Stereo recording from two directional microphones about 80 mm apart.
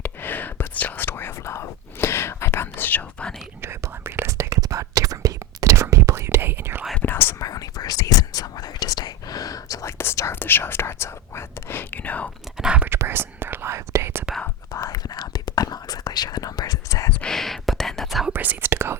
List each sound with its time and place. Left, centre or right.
0.0 s whispering: left
3.6 s whispering: right
7.0 s whispering: left
7.3 s whispering: left
10.0 s whispering: left
12.5 s whispering: centre
13.0 s whispering: right
14.7 s whispering: left
17.2 s whispering: centre
18.3 s whispering: right